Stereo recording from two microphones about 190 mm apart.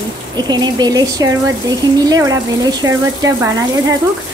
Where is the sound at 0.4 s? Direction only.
20° right (ahead or behind).